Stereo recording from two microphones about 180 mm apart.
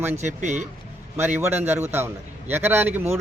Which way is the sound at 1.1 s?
10° right (ahead or behind).